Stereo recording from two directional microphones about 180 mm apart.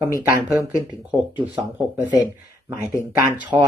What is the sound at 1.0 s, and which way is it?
Speech, 5° right (ahead or behind).